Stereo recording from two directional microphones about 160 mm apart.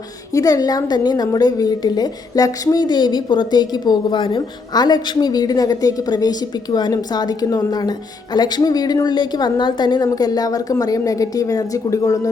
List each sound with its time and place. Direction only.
0.3 s a woman's voice: 20° left (ahead or behind)